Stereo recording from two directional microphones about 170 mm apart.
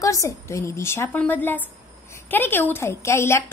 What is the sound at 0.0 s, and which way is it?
A woman's voice, 20° left (ahead or behind).